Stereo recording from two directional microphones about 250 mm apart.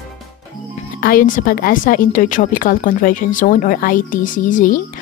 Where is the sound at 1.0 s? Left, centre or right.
Left.